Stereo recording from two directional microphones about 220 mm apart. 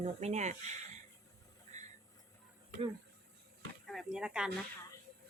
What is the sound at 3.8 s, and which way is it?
Speech, centre (ahead or behind).